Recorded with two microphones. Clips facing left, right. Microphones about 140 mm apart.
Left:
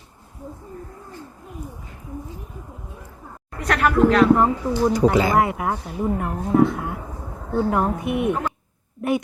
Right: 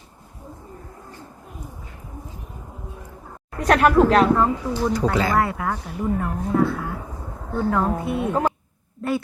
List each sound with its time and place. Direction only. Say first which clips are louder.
3.7 s speech: right 2 dB; 45° right (ahead or behind)
4.4 s speech: left 2 dB; 15° left (ahead or behind)
9.0 s a sound: left 2 dB; 15° left (ahead or behind)